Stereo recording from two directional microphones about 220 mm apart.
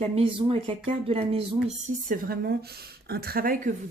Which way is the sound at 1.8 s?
40° right (ahead or behind).